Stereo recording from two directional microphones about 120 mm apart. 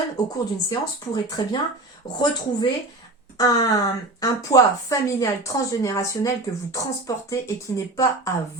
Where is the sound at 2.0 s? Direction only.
35° left (ahead or behind).